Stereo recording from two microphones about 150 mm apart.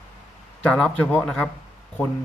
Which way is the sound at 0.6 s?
5° left (ahead or behind).